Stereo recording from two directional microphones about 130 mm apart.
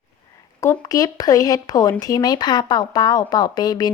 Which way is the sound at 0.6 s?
25° left (ahead or behind).